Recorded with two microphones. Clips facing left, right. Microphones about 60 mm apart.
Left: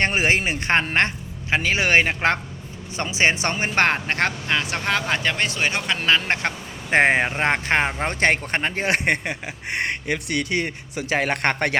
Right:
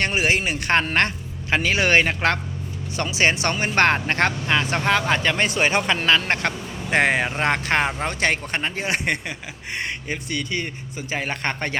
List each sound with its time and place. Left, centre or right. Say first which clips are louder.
0.0 s speech: left 1 dB; left
1.5 s speech: right 1 dB; centre
3.8 s speech: right 2 dB; centre
5.5 s a man's voice: right 3 dB; centre
6.0 s speech: right 1 dB; centre
6.9 s speech: left 2 dB; left
8.0 s speech: left 2 dB; left